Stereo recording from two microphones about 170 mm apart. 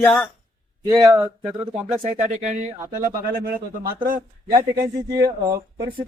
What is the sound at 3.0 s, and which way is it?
Speech, 55° right (ahead or behind).